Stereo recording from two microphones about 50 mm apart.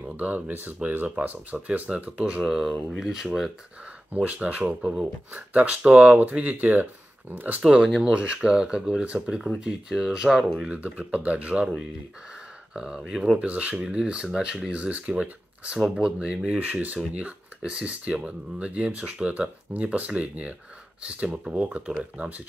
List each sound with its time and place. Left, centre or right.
0.0 s speech: right
1.9 s speech: right
2.4 s speech: centre
4.1 s speech: right
8.0 s speech: right
9.0 s speech: right
9.6 s speech: centre
10.7 s speech: right
12.7 s speech: centre; by 13.8 s right
13.8 s speech: centre
16.5 s speech: right